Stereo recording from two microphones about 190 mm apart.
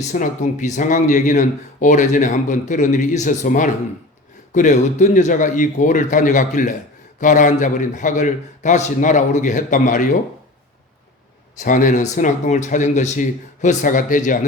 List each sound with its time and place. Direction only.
0.1 s a man's voice: 40° left (ahead or behind)
11.6 s speech: 45° left (ahead or behind)